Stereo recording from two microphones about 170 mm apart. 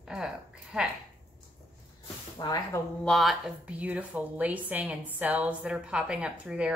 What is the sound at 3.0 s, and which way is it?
Speech, centre (ahead or behind).